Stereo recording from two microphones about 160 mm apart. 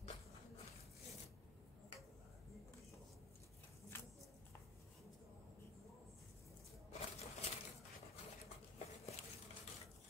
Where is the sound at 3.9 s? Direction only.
15° left (ahead or behind).